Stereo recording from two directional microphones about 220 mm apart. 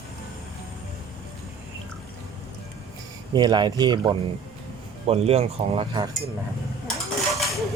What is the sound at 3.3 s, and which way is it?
Speech, 20° right (ahead or behind).